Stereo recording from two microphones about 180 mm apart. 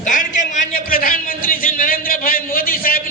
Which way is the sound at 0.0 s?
45° left (ahead or behind).